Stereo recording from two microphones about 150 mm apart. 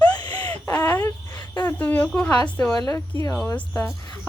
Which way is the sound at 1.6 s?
10° left (ahead or behind).